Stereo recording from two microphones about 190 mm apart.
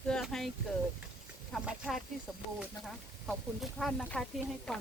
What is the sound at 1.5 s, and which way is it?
Speech, 5° right (ahead or behind).